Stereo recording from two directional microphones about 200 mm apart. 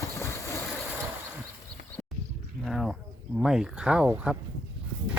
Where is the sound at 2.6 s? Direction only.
Centre (ahead or behind).